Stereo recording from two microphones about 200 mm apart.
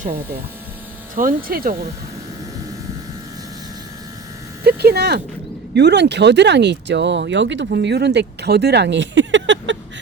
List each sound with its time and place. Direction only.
1.1 s speech: 45° right (ahead or behind)
4.6 s speech: 50° right (ahead or behind)